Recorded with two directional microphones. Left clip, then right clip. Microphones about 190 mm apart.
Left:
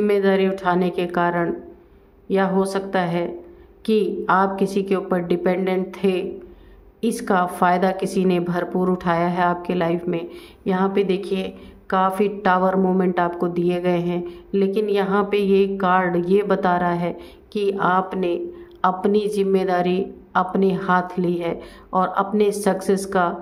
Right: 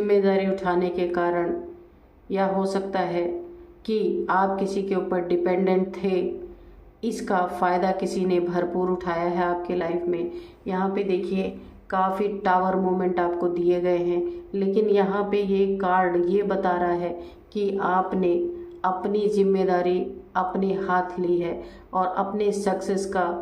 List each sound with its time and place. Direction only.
0.0 s a woman's voice: 40° left (ahead or behind)